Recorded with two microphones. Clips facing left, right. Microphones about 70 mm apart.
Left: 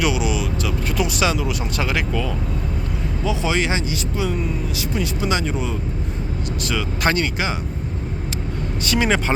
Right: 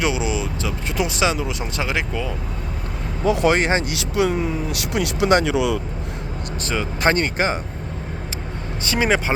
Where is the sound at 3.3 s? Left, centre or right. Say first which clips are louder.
Right 5 dB; right.